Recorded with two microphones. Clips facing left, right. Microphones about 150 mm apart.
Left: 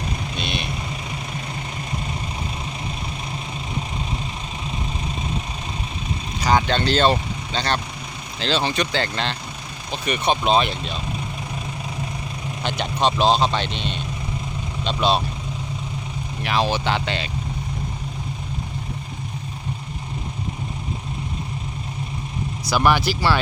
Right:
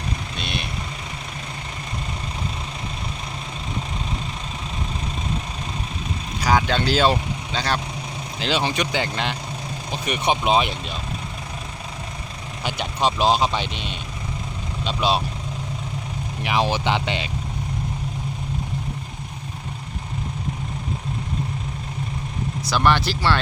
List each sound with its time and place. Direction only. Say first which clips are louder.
0.3 s vehicle: left 2 dB; centre (ahead or behind)
6.4 s speech: left 1 dB; 5° right (ahead or behind)
12.6 s speech: left 1 dB; 10° right (ahead or behind)
16.4 s speech: even; 15° right (ahead or behind)
22.7 s speech: left 1 dB; 5° left (ahead or behind)